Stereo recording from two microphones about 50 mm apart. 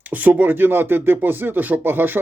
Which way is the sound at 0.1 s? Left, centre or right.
Right.